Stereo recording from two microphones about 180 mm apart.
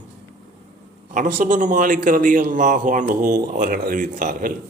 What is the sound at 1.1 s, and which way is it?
A man's voice, 45° right (ahead or behind).